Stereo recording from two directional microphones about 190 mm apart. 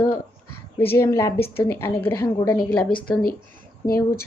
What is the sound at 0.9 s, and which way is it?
A woman's voice, 15° left (ahead or behind).